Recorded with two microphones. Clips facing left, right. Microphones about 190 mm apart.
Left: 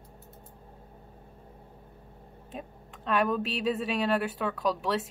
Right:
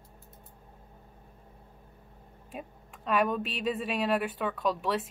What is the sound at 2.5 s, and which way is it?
Speech, 5° right (ahead or behind).